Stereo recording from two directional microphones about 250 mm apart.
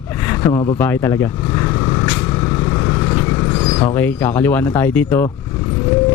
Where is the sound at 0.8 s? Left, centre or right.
Centre.